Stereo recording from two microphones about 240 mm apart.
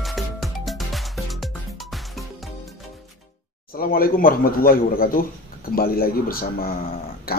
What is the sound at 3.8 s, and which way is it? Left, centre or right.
Speech, left.